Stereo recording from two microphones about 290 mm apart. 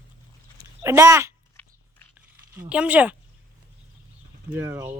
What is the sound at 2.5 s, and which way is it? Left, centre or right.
Speech, centre.